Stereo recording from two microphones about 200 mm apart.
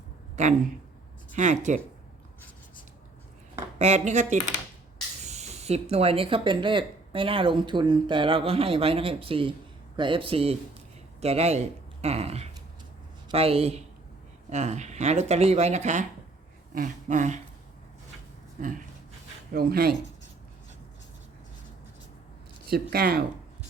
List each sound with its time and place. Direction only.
1.4 s speech: 35° right (ahead or behind)
3.8 s speech: 35° right (ahead or behind)
19.5 s speech: 50° right (ahead or behind)
22.7 s speech: 50° right (ahead or behind)